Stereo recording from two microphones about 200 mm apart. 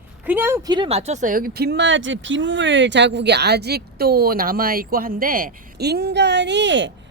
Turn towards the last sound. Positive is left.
turn(degrees=-65)  # may be behind; listen again after turning